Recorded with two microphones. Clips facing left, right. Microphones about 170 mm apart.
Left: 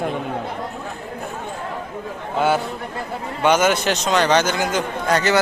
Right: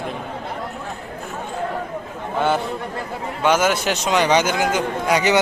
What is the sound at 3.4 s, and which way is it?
A man's voice, 5° right (ahead or behind).